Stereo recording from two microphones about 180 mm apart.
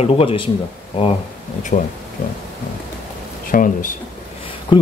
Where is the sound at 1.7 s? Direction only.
45° left (ahead or behind).